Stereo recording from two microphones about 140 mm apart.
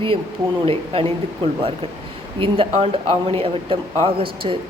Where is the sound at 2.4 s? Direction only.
40° right (ahead or behind).